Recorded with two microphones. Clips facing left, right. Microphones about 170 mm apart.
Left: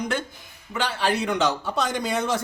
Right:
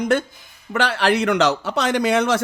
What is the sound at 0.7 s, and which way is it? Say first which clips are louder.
A man's voice: right 6 dB; 75° right (ahead or behind).